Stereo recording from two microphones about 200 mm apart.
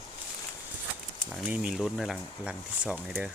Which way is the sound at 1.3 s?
5° right (ahead or behind).